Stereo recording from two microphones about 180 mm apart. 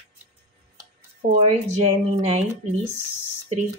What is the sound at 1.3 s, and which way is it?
Speech, 35° right (ahead or behind).